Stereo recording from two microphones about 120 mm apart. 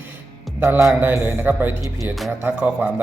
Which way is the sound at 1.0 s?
15° right (ahead or behind).